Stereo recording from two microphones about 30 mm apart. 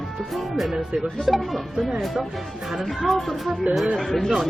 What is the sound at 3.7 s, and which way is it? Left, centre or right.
Speech, right.